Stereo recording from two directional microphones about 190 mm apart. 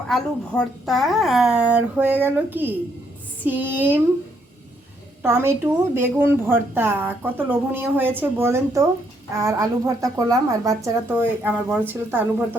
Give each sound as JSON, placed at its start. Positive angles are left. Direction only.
{"t": 0.1, "sound": "a woman's voice", "side_deg": 0}
{"t": 5.2, "sound": "a woman's voice", "side_deg": -15}